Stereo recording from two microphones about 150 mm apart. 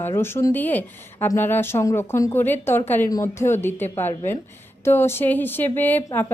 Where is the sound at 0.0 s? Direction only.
15° left (ahead or behind).